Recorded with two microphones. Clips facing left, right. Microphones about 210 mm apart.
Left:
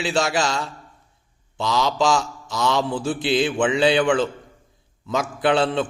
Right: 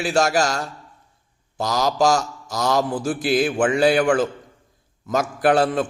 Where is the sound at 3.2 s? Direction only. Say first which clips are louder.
Right 1 dB; 25° left (ahead or behind).